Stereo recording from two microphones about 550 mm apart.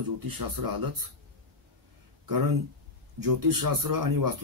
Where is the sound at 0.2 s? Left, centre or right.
Right.